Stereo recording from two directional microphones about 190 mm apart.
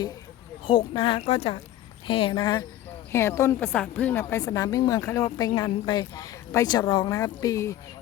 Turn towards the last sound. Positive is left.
turn(degrees=15)  # may be behind; listen again after turning